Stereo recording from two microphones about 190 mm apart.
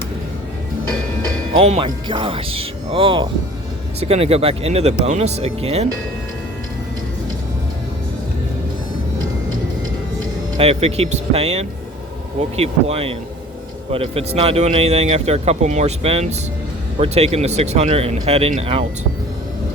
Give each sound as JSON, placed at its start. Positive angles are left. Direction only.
{"t": 1.5, "sound": "speech", "side_deg": -35}
{"t": 10.6, "sound": "speech", "side_deg": -35}